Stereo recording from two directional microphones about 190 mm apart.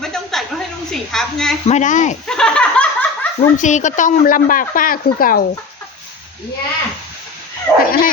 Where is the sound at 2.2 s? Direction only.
5° left (ahead or behind).